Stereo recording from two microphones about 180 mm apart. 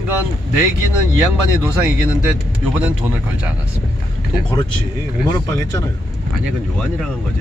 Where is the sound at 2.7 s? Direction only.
10° right (ahead or behind).